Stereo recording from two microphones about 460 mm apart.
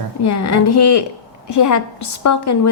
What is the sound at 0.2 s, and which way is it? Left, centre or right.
Speech, left.